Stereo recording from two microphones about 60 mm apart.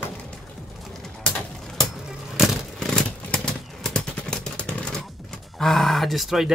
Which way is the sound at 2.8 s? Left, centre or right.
Centre.